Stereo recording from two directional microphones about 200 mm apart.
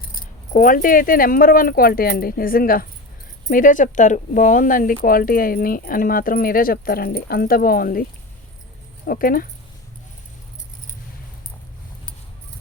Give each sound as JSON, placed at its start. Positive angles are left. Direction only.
{"t": 0.5, "sound": "speech", "side_deg": 45}
{"t": 9.0, "sound": "speech", "side_deg": 45}